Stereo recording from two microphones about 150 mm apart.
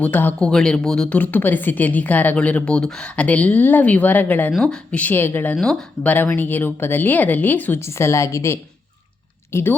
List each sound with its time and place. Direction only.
0.0 s speech: 10° left (ahead or behind)